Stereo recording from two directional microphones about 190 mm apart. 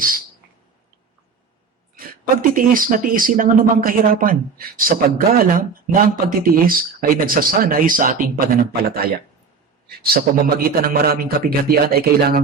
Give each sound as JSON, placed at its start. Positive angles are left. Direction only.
{"t": 2.0, "sound": "speech", "side_deg": -50}